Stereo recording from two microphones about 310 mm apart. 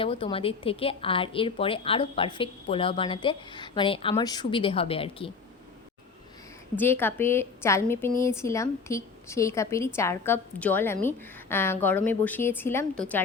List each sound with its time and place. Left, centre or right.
0.0 s a woman's voice: centre
6.7 s a woman's voice: centre